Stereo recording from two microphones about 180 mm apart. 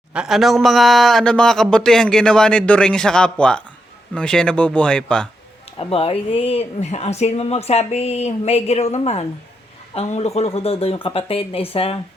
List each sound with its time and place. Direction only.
0.1 s speech: 5° right (ahead or behind)
5.8 s speech: 30° left (ahead or behind)